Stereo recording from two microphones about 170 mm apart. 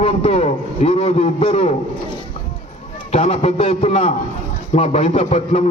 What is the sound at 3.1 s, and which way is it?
A man's voice, 35° left (ahead or behind).